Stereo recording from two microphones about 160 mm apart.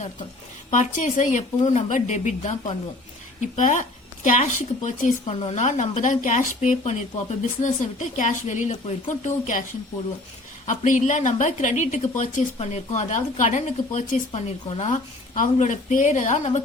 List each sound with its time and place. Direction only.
0.7 s speech: 50° left (ahead or behind)
10.7 s speech: 50° left (ahead or behind)